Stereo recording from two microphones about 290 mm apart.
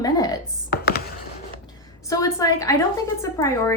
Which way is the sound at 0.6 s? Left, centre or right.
Left.